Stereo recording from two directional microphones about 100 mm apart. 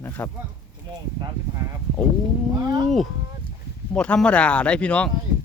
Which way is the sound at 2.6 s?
35° right (ahead or behind).